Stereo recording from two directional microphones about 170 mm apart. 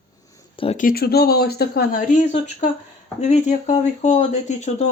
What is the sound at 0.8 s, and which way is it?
Speech, 60° left (ahead or behind).